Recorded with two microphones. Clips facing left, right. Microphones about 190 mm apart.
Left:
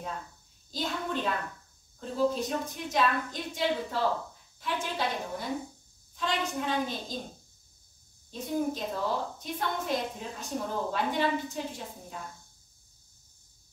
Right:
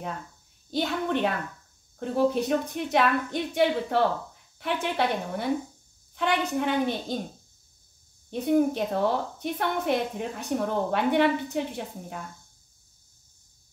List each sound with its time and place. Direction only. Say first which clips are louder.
0.7 s a woman's voice: right 6 dB; 65° right (ahead or behind)
8.3 s a woman's voice: right 8 dB; 65° right (ahead or behind)